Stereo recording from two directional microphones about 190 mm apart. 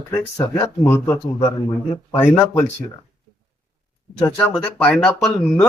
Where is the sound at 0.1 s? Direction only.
20° left (ahead or behind).